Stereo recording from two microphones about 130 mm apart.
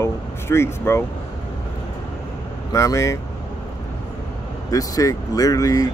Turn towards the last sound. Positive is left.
turn(degrees=30)  # may be behind; listen again after turning